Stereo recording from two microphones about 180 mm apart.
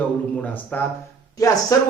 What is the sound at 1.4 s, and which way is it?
Speech, 20° left (ahead or behind).